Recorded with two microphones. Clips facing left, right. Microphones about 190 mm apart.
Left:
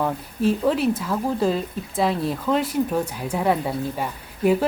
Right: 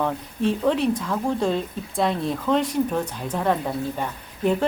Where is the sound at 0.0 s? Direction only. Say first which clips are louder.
Left 1 dB; 5° left (ahead or behind).